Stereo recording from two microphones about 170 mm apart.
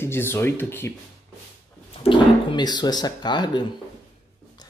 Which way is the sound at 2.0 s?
25° left (ahead or behind).